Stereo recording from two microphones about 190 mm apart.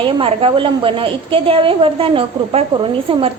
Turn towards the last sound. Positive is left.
turn(degrees=-25)  # may be behind; listen again after turning